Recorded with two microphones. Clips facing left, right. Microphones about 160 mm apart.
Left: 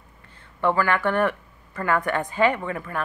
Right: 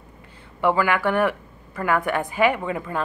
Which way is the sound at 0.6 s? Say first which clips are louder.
Right 1 dB; 10° right (ahead or behind).